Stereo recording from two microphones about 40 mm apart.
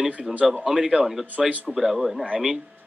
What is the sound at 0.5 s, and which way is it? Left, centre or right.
Speech, centre.